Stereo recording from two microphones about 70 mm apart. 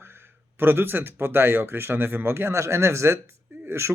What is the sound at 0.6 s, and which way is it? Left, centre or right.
Speech, right.